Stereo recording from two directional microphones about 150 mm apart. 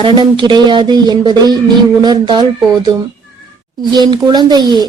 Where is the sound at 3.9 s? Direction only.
30° right (ahead or behind).